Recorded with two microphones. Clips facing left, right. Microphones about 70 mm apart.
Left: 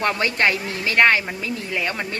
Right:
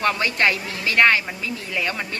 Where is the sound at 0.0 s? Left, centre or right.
Left.